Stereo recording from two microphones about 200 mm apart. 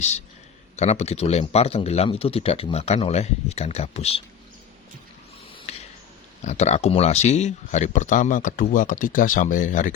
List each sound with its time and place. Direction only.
0.8 s speech: 35° left (ahead or behind)
5.7 s a sound: 30° left (ahead or behind)
6.4 s speech: 35° left (ahead or behind)